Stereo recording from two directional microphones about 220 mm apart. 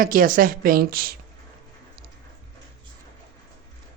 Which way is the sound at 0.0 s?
40° right (ahead or behind).